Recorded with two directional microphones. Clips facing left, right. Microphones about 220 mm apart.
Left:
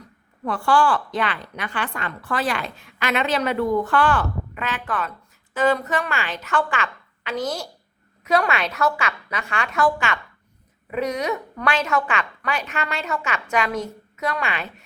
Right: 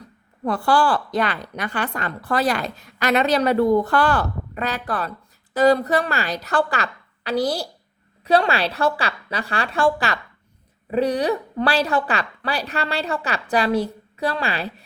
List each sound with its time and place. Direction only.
0.4 s a woman's voice: 35° right (ahead or behind)